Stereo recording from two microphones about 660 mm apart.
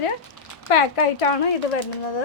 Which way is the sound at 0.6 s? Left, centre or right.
Left.